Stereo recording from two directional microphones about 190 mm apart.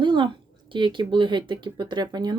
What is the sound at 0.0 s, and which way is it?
Speech, 25° right (ahead or behind).